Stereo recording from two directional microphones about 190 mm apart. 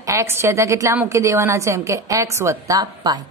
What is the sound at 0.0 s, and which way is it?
A woman's voice, 15° right (ahead or behind).